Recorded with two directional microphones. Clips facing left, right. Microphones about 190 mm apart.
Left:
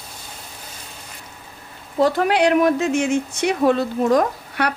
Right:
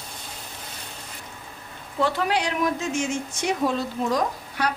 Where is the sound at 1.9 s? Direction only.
45° left (ahead or behind).